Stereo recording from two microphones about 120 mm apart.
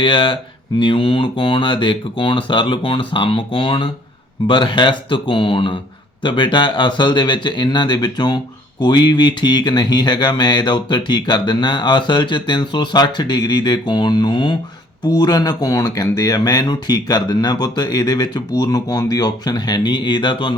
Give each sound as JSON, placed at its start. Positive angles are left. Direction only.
{"t": 0.0, "sound": "speech", "side_deg": 45}